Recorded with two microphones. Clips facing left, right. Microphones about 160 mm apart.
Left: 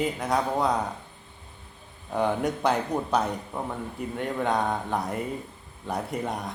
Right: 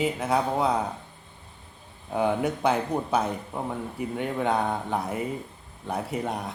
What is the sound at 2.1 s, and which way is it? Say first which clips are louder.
A man's voice: right 1 dB; 5° right (ahead or behind).